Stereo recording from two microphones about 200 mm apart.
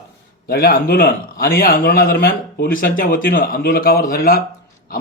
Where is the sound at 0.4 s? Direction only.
50° left (ahead or behind).